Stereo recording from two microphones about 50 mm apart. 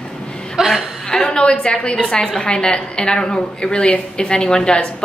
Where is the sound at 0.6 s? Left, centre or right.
Centre.